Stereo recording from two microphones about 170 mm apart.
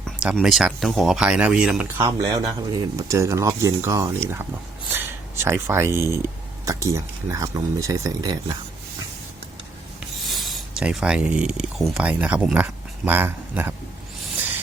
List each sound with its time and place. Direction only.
0.2 s speech: 5° right (ahead or behind)
2.0 s speech: 25° right (ahead or behind)
10.0 s speech: centre (ahead or behind)